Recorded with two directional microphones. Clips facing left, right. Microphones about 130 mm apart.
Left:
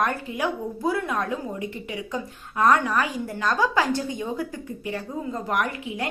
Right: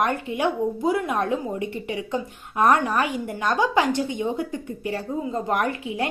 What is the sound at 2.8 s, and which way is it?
A woman's voice, 25° right (ahead or behind).